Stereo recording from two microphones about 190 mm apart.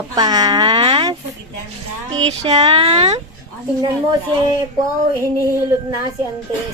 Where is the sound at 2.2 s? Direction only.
30° right (ahead or behind).